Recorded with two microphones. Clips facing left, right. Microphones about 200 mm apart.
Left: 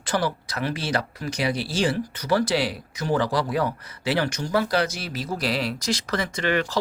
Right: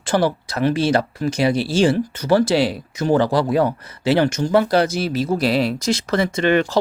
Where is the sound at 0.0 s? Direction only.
25° right (ahead or behind).